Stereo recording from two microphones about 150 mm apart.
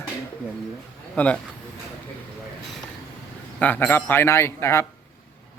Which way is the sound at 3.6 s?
10° left (ahead or behind).